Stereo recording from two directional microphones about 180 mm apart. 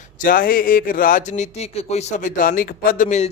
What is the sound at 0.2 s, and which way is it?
A man's voice, 50° left (ahead or behind).